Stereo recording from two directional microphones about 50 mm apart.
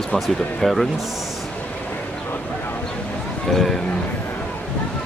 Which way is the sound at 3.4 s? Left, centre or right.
Centre.